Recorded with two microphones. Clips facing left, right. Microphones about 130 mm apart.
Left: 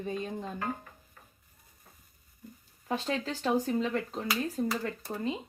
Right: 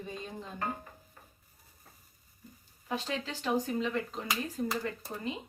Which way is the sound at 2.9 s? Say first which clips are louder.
Left 3 dB; 45° left (ahead or behind).